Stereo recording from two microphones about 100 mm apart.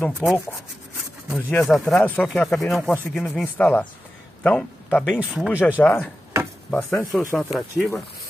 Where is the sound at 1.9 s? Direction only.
20° left (ahead or behind).